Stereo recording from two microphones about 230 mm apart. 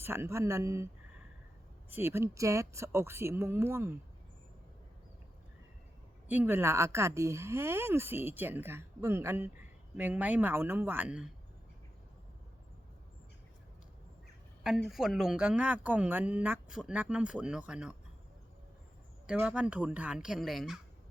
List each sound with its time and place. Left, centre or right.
0.0 s speech: centre
1.9 s speech: centre
6.2 s speech: centre
14.6 s a woman's voice: centre
19.3 s a woman's voice: centre